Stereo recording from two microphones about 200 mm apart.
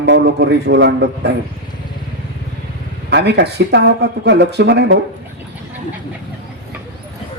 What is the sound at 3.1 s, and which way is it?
A man's voice, 55° right (ahead or behind).